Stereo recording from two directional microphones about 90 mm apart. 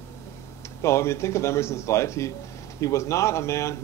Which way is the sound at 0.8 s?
30° left (ahead or behind).